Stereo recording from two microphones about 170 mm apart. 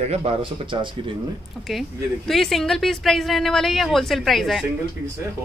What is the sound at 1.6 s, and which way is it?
Speech, centre (ahead or behind).